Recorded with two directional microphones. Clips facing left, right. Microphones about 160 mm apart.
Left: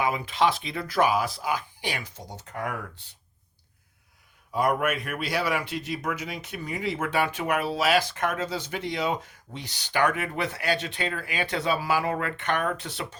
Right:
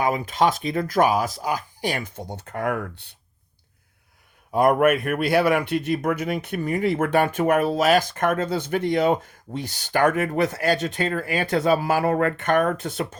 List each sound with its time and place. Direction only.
0.0 s a man's voice: 45° right (ahead or behind); by 3.2 s 60° right (ahead or behind)
4.5 s a man's voice: 55° right (ahead or behind)